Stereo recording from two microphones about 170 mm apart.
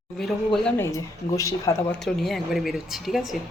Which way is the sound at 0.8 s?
20° left (ahead or behind).